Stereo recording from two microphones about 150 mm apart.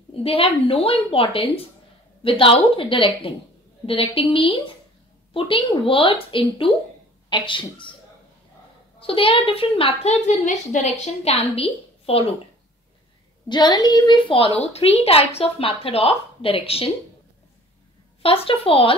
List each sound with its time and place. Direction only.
0.2 s a woman's voice: 40° left (ahead or behind)
7.2 s a woman's voice: 35° left (ahead or behind)
9.0 s a woman's voice: 35° left (ahead or behind)
13.5 s a woman's voice: 30° left (ahead or behind)
18.2 s a woman's voice: 40° left (ahead or behind)